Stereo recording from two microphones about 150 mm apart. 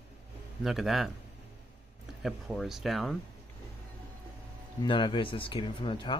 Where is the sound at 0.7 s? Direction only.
Centre (ahead or behind).